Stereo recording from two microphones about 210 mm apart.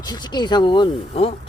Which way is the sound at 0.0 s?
20° left (ahead or behind).